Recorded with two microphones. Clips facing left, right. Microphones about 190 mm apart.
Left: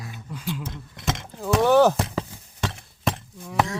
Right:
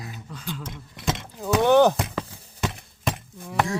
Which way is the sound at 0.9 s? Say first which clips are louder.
Right 1 dB; 20° left (ahead or behind).